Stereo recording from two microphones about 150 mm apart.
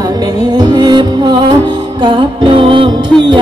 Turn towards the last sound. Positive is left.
turn(degrees=-35)  # may be behind; listen again after turning